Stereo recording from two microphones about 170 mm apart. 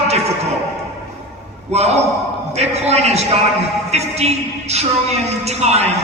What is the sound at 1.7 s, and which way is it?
A man's voice, 40° right (ahead or behind).